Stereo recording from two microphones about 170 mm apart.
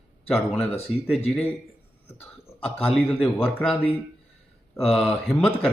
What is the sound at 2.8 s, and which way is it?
Speech, 5° left (ahead or behind).